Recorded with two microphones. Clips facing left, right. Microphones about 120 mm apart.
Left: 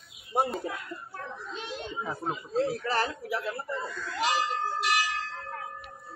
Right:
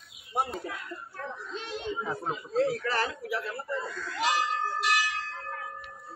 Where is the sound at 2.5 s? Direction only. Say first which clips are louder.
Right 1 dB; 20° left (ahead or behind).